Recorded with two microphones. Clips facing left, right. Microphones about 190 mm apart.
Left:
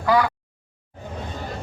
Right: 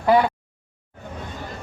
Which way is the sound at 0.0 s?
25° right (ahead or behind).